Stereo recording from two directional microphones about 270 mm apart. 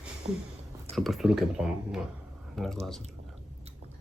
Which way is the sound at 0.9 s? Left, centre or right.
Centre.